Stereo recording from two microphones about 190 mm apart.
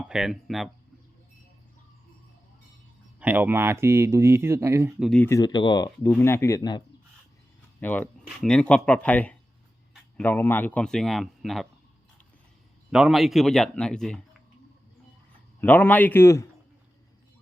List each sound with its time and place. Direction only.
0.0 s a man's voice: 5° right (ahead or behind)
3.2 s speech: 10° right (ahead or behind)
4.9 s a man's voice: centre (ahead or behind)
5.2 s speech: 15° left (ahead or behind)
7.8 s speech: 10° left (ahead or behind)
12.9 s a man's voice: centre (ahead or behind)
15.6 s speech: 10° left (ahead or behind)